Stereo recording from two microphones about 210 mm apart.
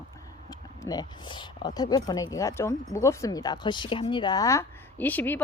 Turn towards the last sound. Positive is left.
turn(degrees=10)  # may be behind; listen again after turning